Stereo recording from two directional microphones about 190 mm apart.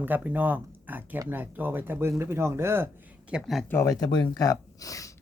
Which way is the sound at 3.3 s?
Centre (ahead or behind).